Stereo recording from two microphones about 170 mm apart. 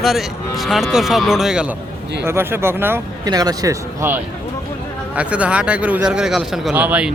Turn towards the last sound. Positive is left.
turn(degrees=-5)  # may be behind; listen again after turning